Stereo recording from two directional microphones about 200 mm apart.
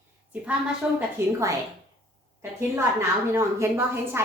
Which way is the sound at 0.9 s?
15° right (ahead or behind).